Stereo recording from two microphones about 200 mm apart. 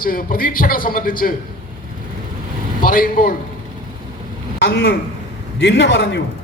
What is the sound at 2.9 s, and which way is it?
Speech, 45° left (ahead or behind).